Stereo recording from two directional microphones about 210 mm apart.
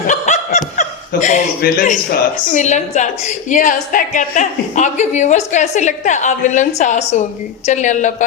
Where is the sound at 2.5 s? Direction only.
35° left (ahead or behind).